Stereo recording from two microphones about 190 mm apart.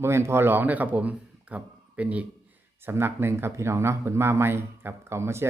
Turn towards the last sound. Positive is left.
turn(degrees=-15)  # may be behind; listen again after turning